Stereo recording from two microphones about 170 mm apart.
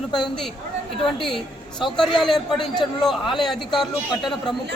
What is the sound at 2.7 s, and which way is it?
Speech, 25° left (ahead or behind).